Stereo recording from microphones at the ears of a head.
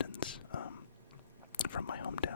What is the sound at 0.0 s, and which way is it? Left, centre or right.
Whispering, left.